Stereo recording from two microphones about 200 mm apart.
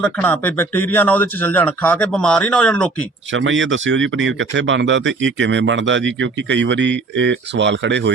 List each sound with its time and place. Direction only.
0.0 s a man's voice: 10° left (ahead or behind)
3.3 s speech: 70° right (ahead or behind)